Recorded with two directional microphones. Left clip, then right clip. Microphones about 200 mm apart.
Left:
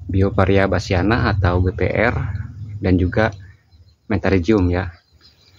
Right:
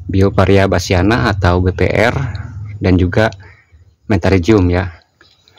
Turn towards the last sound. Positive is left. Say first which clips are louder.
# right 5 dB
turn(degrees=-40)  # may be behind; listen again after turning